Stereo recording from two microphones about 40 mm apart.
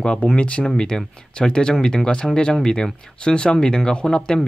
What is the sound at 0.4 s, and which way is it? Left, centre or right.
Speech, left.